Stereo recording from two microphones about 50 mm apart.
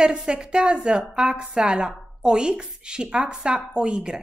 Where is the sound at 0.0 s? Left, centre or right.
Centre.